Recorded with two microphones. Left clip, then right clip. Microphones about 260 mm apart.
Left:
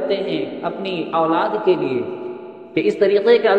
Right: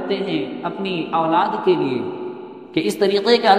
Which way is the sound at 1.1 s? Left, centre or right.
Right.